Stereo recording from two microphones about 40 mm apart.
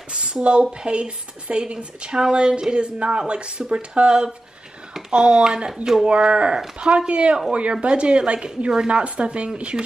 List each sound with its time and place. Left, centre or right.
0.1 s a woman's voice: right